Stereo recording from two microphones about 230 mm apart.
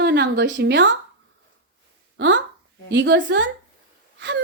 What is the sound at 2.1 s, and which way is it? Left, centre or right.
A woman's voice, right.